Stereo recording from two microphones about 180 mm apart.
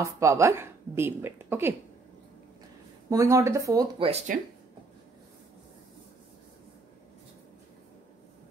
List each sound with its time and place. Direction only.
0.0 s a woman's voice: 15° right (ahead or behind)
3.1 s a woman's voice: 15° right (ahead or behind)
4.3 s speech: 50° right (ahead or behind)